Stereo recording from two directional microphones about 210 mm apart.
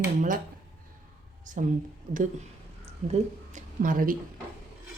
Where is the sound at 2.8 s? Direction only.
30° right (ahead or behind).